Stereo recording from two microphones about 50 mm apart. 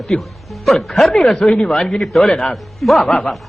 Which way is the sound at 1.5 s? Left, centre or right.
Centre.